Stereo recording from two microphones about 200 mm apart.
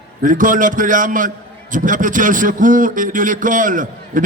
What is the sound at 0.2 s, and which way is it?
A man's voice, 40° right (ahead or behind).